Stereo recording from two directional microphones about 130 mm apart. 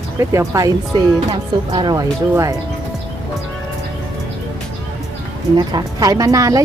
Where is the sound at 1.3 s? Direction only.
35° right (ahead or behind).